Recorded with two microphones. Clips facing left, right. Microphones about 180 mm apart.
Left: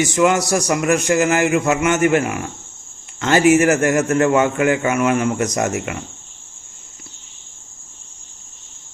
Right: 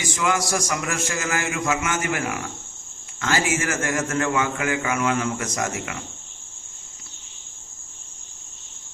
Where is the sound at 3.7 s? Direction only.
20° left (ahead or behind).